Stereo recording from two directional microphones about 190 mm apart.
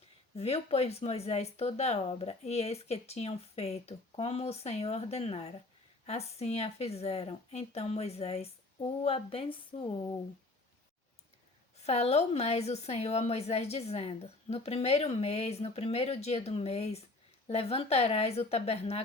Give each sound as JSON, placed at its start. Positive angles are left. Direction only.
{"t": 0.3, "sound": "speech", "side_deg": 30}
{"t": 11.8, "sound": "speech", "side_deg": 35}